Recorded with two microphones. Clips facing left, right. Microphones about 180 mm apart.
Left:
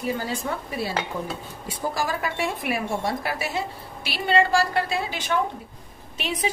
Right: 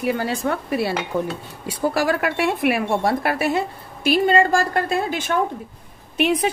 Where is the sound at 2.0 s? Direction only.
70° right (ahead or behind).